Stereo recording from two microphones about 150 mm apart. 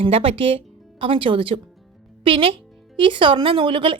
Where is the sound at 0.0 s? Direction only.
35° right (ahead or behind).